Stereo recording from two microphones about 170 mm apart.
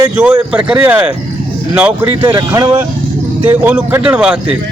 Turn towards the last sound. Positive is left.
turn(degrees=-5)  # may be behind; listen again after turning